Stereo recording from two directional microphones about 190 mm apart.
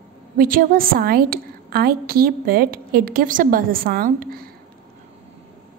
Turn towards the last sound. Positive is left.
turn(degrees=-50)  # may be behind; listen again after turning